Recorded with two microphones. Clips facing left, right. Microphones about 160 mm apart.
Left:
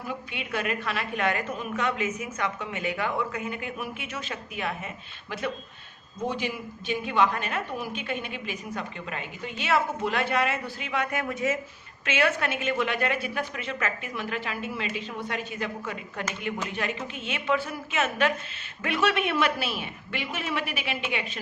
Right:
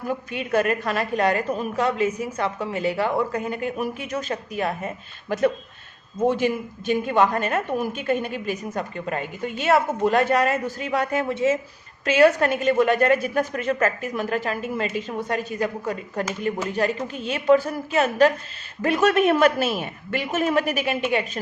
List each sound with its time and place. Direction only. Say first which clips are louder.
0.1 s a woman's voice: right 9 dB; 45° right (ahead or behind); by 11.6 s 30° right (ahead or behind)
12.0 s a woman's voice: right 9 dB; 40° right (ahead or behind)